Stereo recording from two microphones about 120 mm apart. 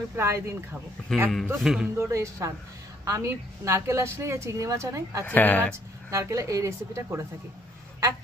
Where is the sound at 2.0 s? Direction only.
25° right (ahead or behind).